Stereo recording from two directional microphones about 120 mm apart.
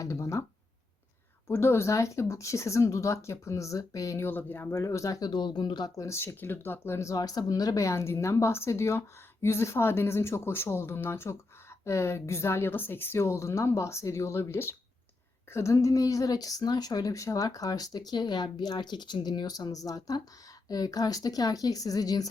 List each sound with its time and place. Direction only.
0.0 s speech: 25° left (ahead or behind)
1.5 s speech: 20° left (ahead or behind)
5.2 s a woman's voice: 40° left (ahead or behind)